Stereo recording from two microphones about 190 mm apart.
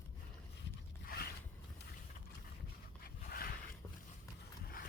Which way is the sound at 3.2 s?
50° left (ahead or behind).